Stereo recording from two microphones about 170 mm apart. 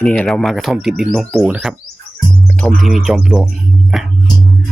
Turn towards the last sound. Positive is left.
turn(degrees=-5)  # may be behind; listen again after turning